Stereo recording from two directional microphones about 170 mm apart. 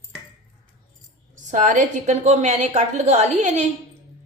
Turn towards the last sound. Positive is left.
turn(degrees=-45)  # may be behind; listen again after turning